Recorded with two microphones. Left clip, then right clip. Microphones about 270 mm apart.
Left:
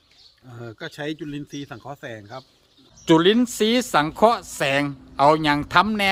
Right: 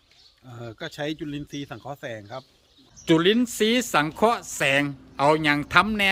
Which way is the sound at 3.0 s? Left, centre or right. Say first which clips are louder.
Left 3 dB; centre.